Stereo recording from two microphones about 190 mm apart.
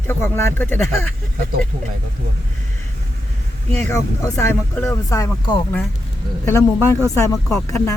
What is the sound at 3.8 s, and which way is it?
Speech, 15° left (ahead or behind).